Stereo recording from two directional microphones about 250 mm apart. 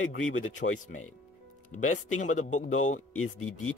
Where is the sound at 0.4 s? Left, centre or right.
Left.